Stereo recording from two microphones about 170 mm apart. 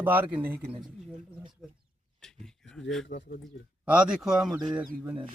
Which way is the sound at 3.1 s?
50° left (ahead or behind).